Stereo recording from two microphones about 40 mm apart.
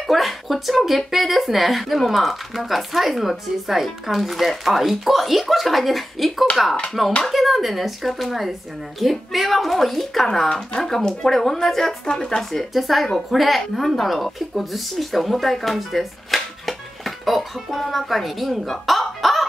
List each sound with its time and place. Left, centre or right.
0.0 s speech: centre
10.8 s speech: centre
12.7 s speech: centre